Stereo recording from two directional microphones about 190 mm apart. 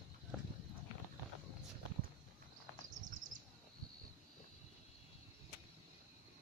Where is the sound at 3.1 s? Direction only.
45° right (ahead or behind).